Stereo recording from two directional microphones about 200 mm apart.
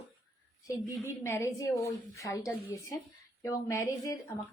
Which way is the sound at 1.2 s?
15° left (ahead or behind).